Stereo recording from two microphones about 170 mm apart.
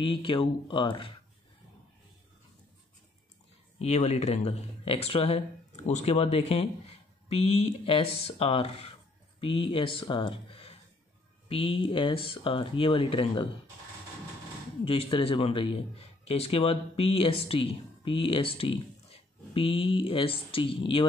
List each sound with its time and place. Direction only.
0.0 s speech: 30° left (ahead or behind)
3.8 s speech: 40° left (ahead or behind)
14.9 s speech: 30° left (ahead or behind)